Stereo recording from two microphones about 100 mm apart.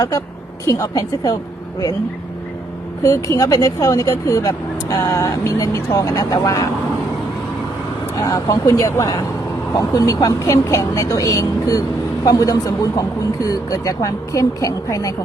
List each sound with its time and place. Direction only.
0.7 s speech: 35° left (ahead or behind)
3.0 s speech: 35° left (ahead or behind)
8.2 s speech: 35° left (ahead or behind)